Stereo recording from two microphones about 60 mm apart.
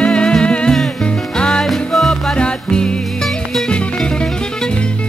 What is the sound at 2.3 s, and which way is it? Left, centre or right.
Music, centre.